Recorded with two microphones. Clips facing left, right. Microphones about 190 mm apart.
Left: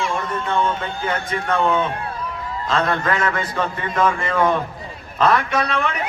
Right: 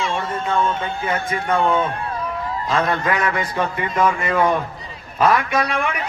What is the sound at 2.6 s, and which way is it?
A man's voice, 10° right (ahead or behind).